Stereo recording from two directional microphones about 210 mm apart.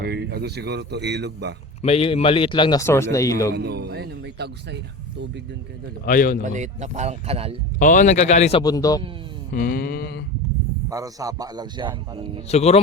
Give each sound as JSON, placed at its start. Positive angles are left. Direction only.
{"t": 0.0, "sound": "speech", "side_deg": -50}
{"t": 1.8, "sound": "a man's voice", "side_deg": 30}
{"t": 3.5, "sound": "a man's voice", "side_deg": -50}
{"t": 6.1, "sound": "speech", "side_deg": 40}
{"t": 6.4, "sound": "speech", "side_deg": -35}
{"t": 7.8, "sound": "speech", "side_deg": 35}
{"t": 8.6, "sound": "a man's voice", "side_deg": 15}
{"t": 9.5, "sound": "a sound", "side_deg": 45}
{"t": 10.8, "sound": "a man's voice", "side_deg": -15}
{"t": 12.5, "sound": "speech", "side_deg": 30}